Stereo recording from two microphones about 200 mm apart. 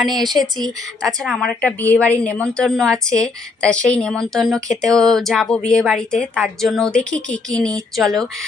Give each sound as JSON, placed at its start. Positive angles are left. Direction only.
{"t": 0.1, "sound": "speech", "side_deg": -20}
{"t": 0.3, "sound": "a woman's voice", "side_deg": 0}